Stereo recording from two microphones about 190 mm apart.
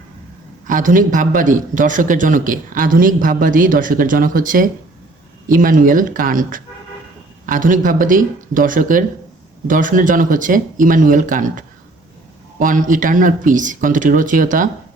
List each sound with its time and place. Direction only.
0.7 s a man's voice: 45° right (ahead or behind)